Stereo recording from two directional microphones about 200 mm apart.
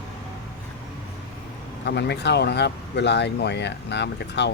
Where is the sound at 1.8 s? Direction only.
60° left (ahead or behind).